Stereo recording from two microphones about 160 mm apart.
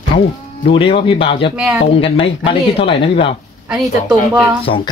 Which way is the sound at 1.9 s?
35° left (ahead or behind).